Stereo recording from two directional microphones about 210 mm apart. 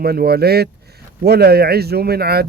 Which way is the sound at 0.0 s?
50° right (ahead or behind).